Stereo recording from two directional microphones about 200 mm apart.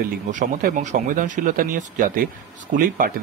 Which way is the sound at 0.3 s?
40° right (ahead or behind).